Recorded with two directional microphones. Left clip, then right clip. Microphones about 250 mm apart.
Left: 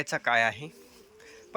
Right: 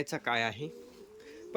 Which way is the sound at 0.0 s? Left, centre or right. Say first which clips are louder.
Left 6 dB; centre.